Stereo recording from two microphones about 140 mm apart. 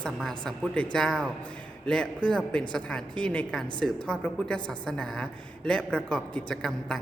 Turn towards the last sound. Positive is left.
turn(degrees=5)  # may be behind; listen again after turning